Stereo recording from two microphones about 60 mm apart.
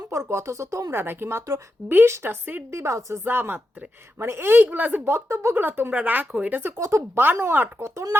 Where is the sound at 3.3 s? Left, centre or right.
Right.